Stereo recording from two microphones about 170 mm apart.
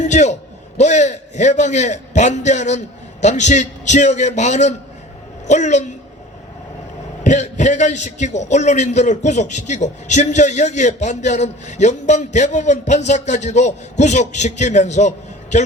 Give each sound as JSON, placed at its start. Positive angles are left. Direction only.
{"t": 0.0, "sound": "a man's voice", "side_deg": 45}
{"t": 7.3, "sound": "a man's voice", "side_deg": 45}